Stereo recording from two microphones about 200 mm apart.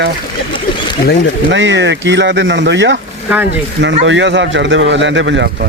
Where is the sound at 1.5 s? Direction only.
65° right (ahead or behind).